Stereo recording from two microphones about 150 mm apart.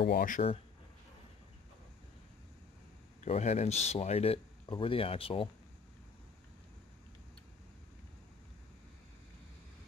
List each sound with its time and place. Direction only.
0.0 s speech: 75° left (ahead or behind)
3.3 s speech: 50° left (ahead or behind)